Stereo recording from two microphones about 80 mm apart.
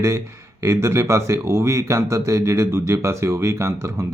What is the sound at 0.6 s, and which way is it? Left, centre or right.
Speech, right.